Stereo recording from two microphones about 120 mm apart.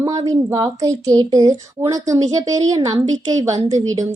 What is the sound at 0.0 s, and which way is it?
A woman's voice, 30° right (ahead or behind).